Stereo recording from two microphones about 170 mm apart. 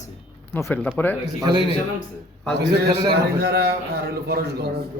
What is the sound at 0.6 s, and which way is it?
Speech, 15° left (ahead or behind).